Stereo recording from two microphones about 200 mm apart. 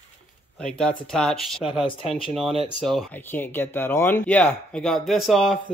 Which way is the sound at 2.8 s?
5° left (ahead or behind).